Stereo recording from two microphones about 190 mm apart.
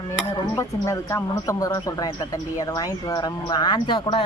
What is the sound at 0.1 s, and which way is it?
Speech, 15° left (ahead or behind).